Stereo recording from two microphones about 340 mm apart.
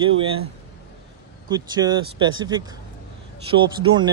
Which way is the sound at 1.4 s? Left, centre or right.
Centre.